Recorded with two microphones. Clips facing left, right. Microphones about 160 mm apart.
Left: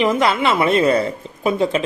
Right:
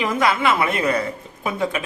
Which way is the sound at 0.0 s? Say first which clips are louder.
Left 3 dB; 25° left (ahead or behind).